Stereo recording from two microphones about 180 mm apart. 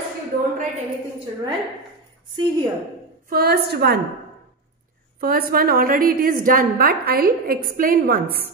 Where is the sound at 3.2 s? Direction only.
55° right (ahead or behind).